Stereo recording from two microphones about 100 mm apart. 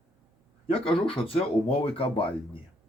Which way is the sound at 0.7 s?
65° left (ahead or behind).